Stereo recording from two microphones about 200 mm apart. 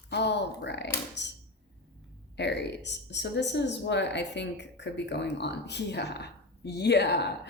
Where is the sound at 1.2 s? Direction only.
60° left (ahead or behind).